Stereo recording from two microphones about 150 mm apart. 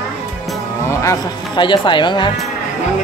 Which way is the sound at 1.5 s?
30° left (ahead or behind).